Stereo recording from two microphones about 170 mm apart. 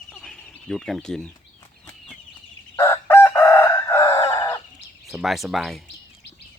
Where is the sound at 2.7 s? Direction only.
15° left (ahead or behind).